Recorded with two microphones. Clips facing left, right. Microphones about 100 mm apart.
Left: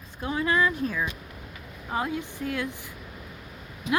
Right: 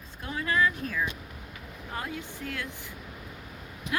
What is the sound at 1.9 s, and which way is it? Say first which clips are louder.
Speech: left 7 dB; 10° left (ahead or behind).